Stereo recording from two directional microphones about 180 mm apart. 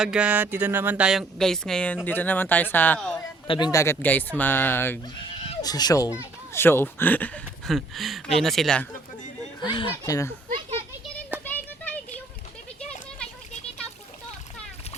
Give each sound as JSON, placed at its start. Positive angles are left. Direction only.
{"t": 0.0, "sound": "speech", "side_deg": -5}
{"t": 3.4, "sound": "speech", "side_deg": 25}
{"t": 5.1, "sound": "speech", "side_deg": 30}
{"t": 9.6, "sound": "speech", "side_deg": 30}
{"t": 9.9, "sound": "speech", "side_deg": 15}
{"t": 11.4, "sound": "a sound", "side_deg": 10}